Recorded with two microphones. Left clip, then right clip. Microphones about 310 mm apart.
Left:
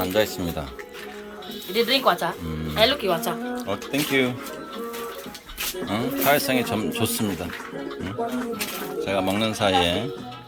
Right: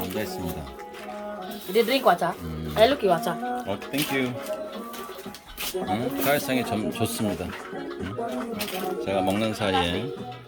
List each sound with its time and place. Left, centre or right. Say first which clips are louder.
1.7 s speech: even; right
3.7 s speech: left 3 dB; centre
5.9 s a man's voice: left 4 dB; centre
9.0 s a man's voice: left 2 dB; centre